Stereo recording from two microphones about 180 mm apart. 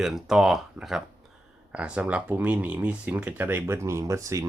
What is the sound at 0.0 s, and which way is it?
Speech, centre (ahead or behind).